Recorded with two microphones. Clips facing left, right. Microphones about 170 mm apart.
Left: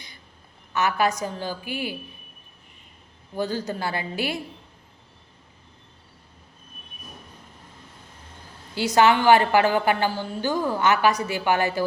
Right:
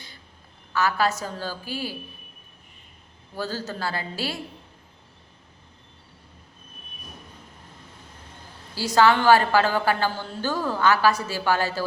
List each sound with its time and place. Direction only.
0.7 s a woman's voice: 20° left (ahead or behind)
3.3 s a woman's voice: 15° left (ahead or behind)
9.0 s a woman's voice: 20° left (ahead or behind)